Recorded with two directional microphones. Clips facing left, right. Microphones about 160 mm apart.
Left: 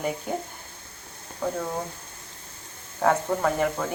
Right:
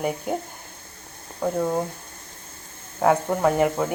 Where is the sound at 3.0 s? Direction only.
10° right (ahead or behind).